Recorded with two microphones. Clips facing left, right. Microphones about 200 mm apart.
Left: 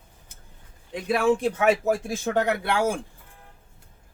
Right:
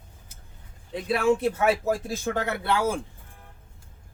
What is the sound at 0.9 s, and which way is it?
Speech, 15° left (ahead or behind).